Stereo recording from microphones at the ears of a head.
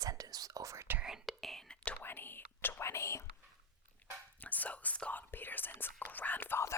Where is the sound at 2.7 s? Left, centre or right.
Left.